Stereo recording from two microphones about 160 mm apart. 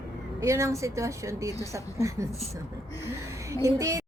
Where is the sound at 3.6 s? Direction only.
20° right (ahead or behind).